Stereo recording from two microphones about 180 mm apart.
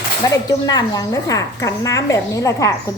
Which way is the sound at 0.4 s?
20° left (ahead or behind).